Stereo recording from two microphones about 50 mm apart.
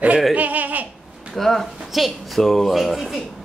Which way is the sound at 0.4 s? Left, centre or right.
Right.